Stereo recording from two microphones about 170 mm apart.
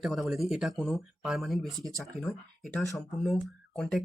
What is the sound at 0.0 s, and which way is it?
Speech, centre (ahead or behind).